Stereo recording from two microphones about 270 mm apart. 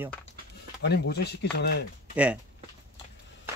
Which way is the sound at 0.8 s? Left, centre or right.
Left.